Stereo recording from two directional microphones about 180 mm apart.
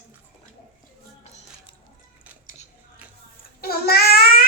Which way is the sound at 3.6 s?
60° left (ahead or behind).